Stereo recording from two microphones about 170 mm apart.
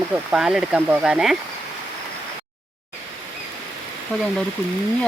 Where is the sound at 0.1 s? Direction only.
5° right (ahead or behind).